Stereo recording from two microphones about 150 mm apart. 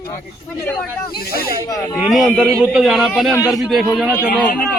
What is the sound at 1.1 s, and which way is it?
Speech, 90° left.